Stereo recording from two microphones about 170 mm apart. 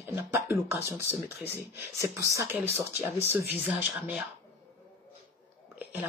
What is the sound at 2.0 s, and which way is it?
Speech, 15° right (ahead or behind).